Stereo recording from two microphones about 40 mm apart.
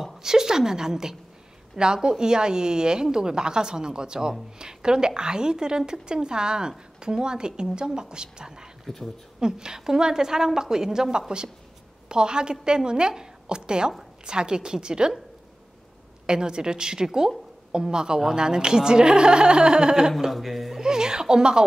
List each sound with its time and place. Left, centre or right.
0.0 s a woman's voice: centre
8.8 s speech: centre
9.4 s a woman's voice: centre
16.3 s a woman's voice: centre
20.1 s speech: centre
20.7 s speech: centre